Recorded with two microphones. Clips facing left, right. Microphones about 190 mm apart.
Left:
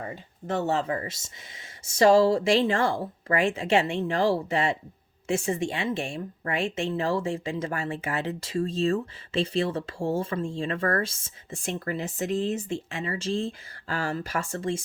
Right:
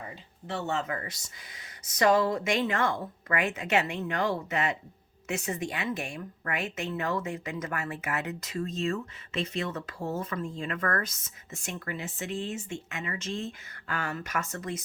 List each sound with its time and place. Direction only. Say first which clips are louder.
0.4 s speech: left 6 dB; 40° left (ahead or behind)